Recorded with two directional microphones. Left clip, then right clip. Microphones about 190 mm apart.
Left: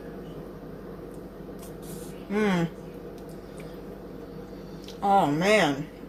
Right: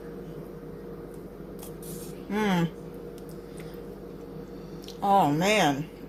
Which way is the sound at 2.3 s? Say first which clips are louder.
Left 1 dB; 20° right (ahead or behind).